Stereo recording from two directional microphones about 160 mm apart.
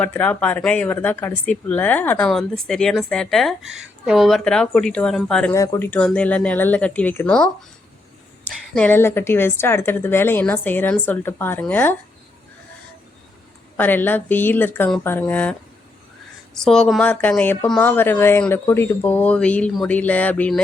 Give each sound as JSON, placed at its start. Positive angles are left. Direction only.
{"t": 0.0, "sound": "speech", "side_deg": 10}
{"t": 5.5, "sound": "speech", "side_deg": 20}
{"t": 5.9, "sound": "a woman's voice", "side_deg": 5}
{"t": 8.7, "sound": "a woman's voice", "side_deg": 10}
{"t": 13.7, "sound": "a woman's voice", "side_deg": 10}
{"t": 16.6, "sound": "a woman's voice", "side_deg": 5}